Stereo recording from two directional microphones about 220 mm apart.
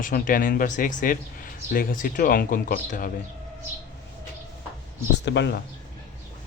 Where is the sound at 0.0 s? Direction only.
40° left (ahead or behind).